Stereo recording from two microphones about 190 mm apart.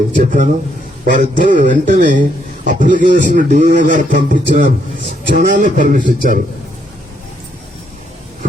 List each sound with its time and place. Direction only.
0.2 s speech: 45° right (ahead or behind)